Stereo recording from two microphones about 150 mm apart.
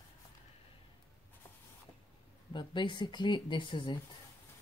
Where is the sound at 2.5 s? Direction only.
30° left (ahead or behind).